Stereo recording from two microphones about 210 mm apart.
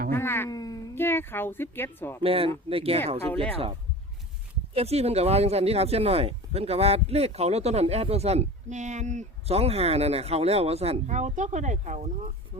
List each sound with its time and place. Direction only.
0.1 s speech: 10° left (ahead or behind)
2.2 s speech: 25° right (ahead or behind)
4.7 s speech: 30° right (ahead or behind)